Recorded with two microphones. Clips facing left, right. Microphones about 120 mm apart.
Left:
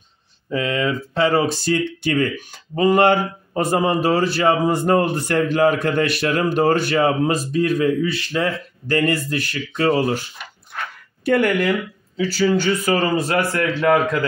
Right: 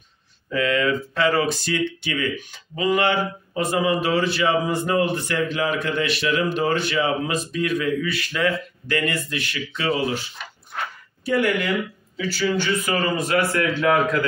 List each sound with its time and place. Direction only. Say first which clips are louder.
0.5 s speech: even; 25° left (ahead or behind); by 10.2 s 45° left (ahead or behind)
11.2 s speech: left 4 dB; 55° left (ahead or behind)
12.2 s a man's voice: left 5 dB; 40° left (ahead or behind)